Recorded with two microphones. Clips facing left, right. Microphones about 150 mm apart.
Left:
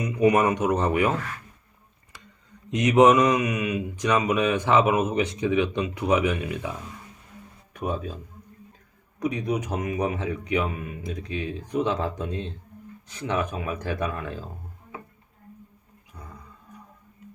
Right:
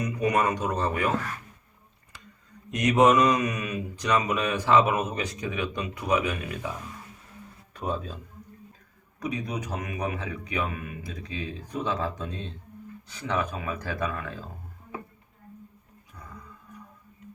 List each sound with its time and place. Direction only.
0.0 s speech: 20° left (ahead or behind)
2.6 s speech: 25° left (ahead or behind)
9.2 s speech: 20° left (ahead or behind)